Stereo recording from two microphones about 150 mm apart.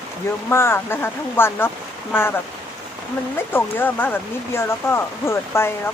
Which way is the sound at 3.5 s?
15° left (ahead or behind).